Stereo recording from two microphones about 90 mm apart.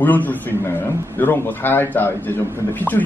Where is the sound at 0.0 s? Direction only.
20° left (ahead or behind).